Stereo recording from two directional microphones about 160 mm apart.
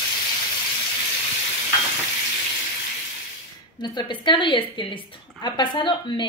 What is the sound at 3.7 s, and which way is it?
A woman's voice, 25° left (ahead or behind).